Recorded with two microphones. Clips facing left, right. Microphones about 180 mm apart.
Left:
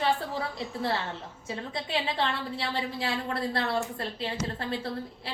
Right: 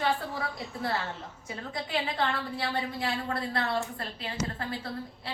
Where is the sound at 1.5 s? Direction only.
25° left (ahead or behind).